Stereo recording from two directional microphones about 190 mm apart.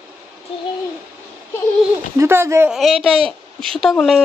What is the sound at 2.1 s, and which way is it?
Speech, 15° right (ahead or behind).